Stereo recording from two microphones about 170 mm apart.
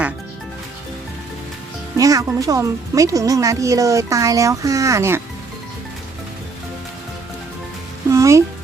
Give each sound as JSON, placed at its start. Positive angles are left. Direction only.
{"t": 2.0, "sound": "speech", "side_deg": -20}
{"t": 8.1, "sound": "music", "side_deg": -15}